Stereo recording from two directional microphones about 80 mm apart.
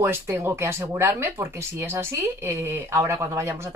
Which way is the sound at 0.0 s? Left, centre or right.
Right.